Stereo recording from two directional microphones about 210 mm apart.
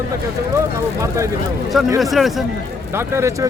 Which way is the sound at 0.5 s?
15° right (ahead or behind).